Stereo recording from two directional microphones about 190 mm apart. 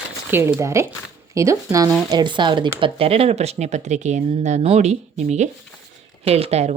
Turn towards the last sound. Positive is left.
turn(degrees=-35)  # may be behind; listen again after turning